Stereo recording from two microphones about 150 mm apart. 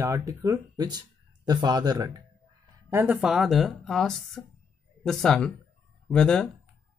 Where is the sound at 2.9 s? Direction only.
15° right (ahead or behind).